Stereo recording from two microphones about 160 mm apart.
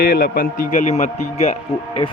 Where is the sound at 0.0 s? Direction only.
70° left (ahead or behind); by 1.5 s 45° left (ahead or behind).